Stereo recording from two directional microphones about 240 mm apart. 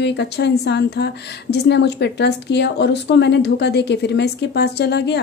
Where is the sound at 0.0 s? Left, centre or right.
Left.